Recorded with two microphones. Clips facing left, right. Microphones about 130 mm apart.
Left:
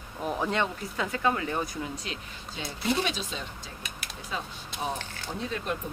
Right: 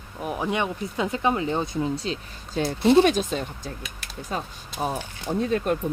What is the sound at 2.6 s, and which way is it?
Speech, 50° right (ahead or behind).